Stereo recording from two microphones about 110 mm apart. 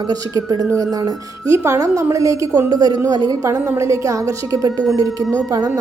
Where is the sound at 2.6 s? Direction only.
40° right (ahead or behind).